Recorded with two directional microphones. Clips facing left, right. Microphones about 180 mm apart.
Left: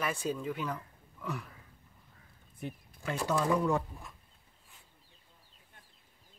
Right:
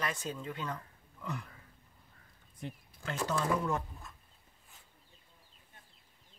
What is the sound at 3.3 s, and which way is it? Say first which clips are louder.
Speech: left 4 dB; 15° left (ahead or behind).